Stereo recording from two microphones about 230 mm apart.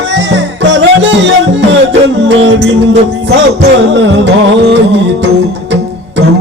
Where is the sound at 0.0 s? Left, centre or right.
Right.